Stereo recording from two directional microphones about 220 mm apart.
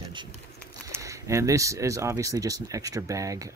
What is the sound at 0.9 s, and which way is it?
Speech, 15° right (ahead or behind).